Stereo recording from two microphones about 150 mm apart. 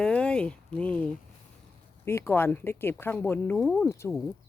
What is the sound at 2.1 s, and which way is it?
Speech, 15° left (ahead or behind).